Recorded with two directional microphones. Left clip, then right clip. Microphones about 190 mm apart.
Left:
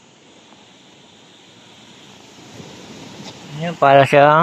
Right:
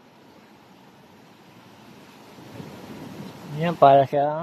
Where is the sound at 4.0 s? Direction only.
10° left (ahead or behind).